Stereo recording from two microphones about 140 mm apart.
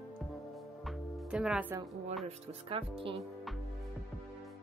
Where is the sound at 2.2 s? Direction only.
45° right (ahead or behind).